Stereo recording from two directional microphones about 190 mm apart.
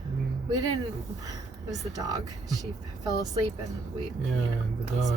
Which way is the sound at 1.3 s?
20° right (ahead or behind).